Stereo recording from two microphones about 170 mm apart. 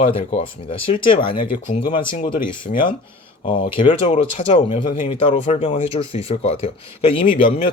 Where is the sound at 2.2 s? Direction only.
50° left (ahead or behind).